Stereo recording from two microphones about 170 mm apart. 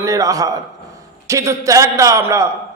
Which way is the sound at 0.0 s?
20° right (ahead or behind).